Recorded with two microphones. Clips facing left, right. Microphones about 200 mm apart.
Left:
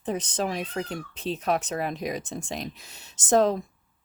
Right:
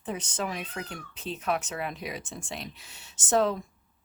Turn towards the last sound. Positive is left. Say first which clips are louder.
# left 4 dB
turn(degrees=40)  # may be behind; listen again after turning